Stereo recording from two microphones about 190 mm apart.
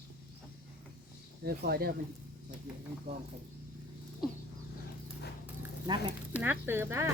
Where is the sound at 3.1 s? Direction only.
35° right (ahead or behind).